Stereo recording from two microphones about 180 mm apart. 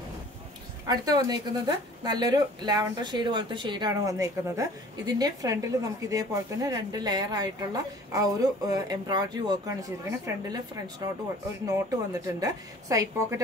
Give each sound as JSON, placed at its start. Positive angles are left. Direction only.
{"t": 0.8, "sound": "speech", "side_deg": -20}
{"t": 11.6, "sound": "speech", "side_deg": -20}